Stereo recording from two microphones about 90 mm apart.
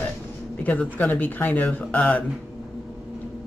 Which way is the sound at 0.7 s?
15° left (ahead or behind).